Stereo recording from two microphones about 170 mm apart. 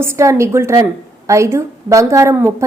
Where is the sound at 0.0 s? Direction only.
15° right (ahead or behind).